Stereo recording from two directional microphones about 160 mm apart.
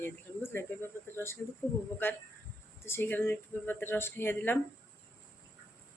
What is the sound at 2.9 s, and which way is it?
Speech, 15° left (ahead or behind).